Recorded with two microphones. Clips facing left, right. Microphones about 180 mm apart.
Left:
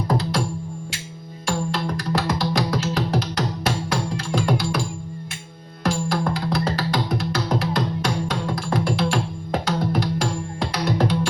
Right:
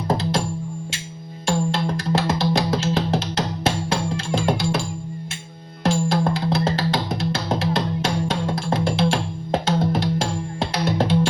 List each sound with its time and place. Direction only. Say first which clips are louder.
0.1 s music: right 2 dB; 25° right (ahead or behind)
1.5 s music: right 3 dB; 25° right (ahead or behind)
5.8 s music: right 3 dB; 25° right (ahead or behind)